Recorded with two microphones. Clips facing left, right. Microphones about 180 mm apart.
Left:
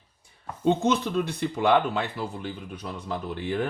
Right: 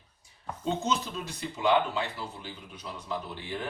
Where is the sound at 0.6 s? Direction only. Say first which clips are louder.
Left 7 dB; 60° left (ahead or behind).